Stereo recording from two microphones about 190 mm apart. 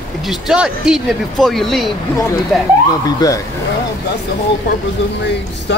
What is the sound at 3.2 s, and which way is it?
Speech, 20° left (ahead or behind).